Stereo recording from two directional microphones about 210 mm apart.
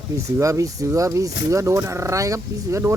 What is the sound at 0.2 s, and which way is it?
Speech, 15° right (ahead or behind).